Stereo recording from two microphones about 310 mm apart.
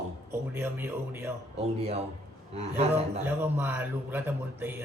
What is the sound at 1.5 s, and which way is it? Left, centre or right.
Speech, centre.